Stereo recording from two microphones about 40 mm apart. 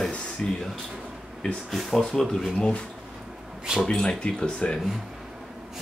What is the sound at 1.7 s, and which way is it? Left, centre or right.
Speech, centre.